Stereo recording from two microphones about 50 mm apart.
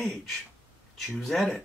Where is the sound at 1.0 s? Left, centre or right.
Centre.